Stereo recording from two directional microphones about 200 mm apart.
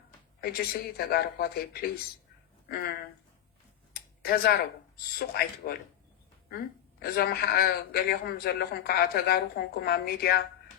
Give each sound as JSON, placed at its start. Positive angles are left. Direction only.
{"t": 0.9, "sound": "a man's voice", "side_deg": 50}
{"t": 3.9, "sound": "a sound", "side_deg": 50}
{"t": 5.2, "sound": "a man's voice", "side_deg": 50}
{"t": 7.0, "sound": "a man's voice", "side_deg": 50}